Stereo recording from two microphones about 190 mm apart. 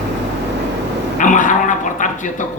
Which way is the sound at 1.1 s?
40° left (ahead or behind).